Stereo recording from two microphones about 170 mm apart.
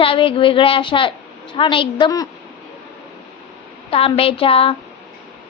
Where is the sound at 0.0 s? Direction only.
30° left (ahead or behind).